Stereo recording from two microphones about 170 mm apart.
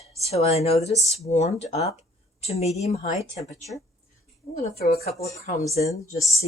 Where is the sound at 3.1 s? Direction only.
20° right (ahead or behind).